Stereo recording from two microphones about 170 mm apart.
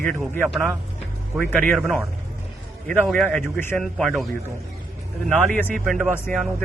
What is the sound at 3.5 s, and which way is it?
Speech, 15° left (ahead or behind).